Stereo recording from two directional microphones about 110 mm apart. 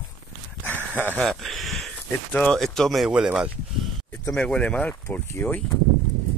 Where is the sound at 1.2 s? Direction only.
Centre (ahead or behind).